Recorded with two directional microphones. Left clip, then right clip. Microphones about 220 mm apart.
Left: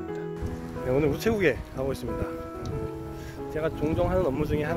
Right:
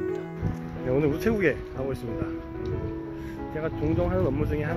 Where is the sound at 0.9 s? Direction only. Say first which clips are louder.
Even; 15° left (ahead or behind).